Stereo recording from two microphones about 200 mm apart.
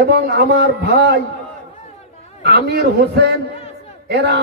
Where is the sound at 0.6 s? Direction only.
55° right (ahead or behind).